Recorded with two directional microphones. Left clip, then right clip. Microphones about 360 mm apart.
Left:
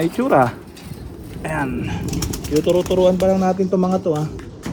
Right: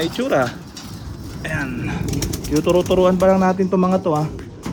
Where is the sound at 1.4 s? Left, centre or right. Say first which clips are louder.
Left 2 dB; centre.